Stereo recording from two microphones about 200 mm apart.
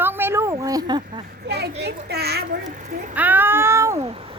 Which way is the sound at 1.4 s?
55° right (ahead or behind).